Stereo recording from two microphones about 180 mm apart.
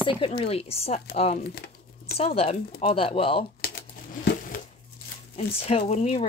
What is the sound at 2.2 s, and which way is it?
Speech, 35° left (ahead or behind).